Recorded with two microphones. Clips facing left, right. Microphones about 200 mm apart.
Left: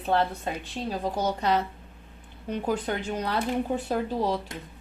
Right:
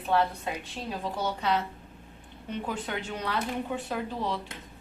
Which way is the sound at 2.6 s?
40° left (ahead or behind).